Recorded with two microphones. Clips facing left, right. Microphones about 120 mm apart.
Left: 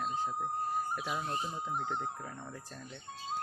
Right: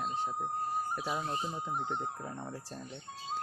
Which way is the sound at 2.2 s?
25° right (ahead or behind).